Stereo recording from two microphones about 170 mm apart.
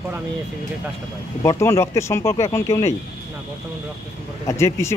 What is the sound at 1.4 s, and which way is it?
Speech, 15° left (ahead or behind).